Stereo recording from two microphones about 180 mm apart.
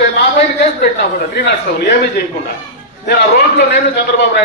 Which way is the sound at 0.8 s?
65° left (ahead or behind).